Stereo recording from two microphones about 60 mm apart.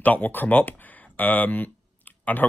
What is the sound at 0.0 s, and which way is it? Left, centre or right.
Speech, left.